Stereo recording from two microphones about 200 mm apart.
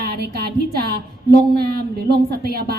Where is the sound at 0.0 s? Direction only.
50° right (ahead or behind).